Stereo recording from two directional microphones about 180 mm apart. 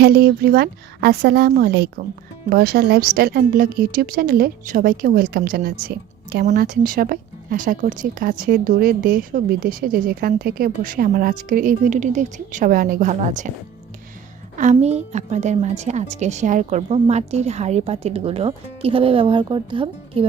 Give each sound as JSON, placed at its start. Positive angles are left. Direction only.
{"t": 0.0, "sound": "a woman's voice", "side_deg": -60}
{"t": 14.5, "sound": "a woman's voice", "side_deg": -45}